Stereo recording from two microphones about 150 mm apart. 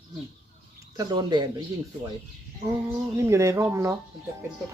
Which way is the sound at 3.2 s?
20° right (ahead or behind).